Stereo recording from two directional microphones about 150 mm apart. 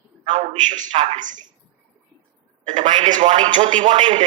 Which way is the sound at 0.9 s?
55° right (ahead or behind).